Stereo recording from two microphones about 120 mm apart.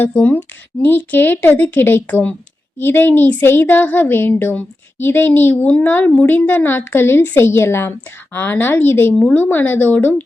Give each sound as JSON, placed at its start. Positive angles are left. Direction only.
{"t": 0.0, "sound": "a woman's voice", "side_deg": 15}